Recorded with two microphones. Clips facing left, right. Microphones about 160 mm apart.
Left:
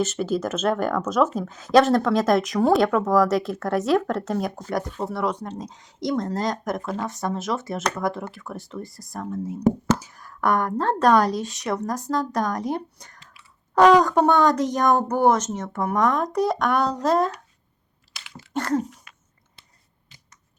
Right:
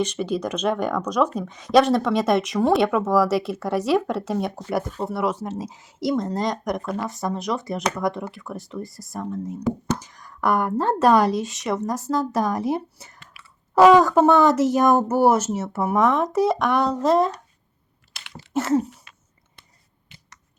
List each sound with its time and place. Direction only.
0.0 s speech: 5° left (ahead or behind)
13.1 s chewing: 60° right (ahead or behind)
13.7 s speech: 5° right (ahead or behind)
18.5 s a sound: 5° right (ahead or behind)